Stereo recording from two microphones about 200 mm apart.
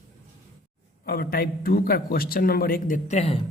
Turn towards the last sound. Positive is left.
turn(degrees=35)  # may be behind; listen again after turning